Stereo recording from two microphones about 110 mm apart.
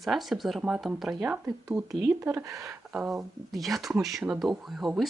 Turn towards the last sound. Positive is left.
turn(degrees=0)  # may be behind; listen again after turning